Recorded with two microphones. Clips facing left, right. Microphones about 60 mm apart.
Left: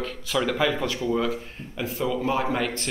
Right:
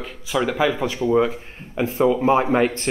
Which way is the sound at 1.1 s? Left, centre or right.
Right.